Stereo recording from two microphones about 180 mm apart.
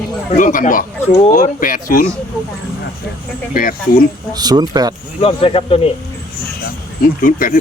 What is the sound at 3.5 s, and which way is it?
Speech, 50° left (ahead or behind).